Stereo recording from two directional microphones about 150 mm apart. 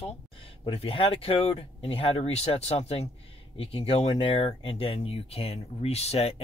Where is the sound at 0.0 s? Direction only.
40° left (ahead or behind).